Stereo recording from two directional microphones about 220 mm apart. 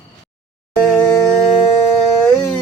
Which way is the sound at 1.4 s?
25° left (ahead or behind).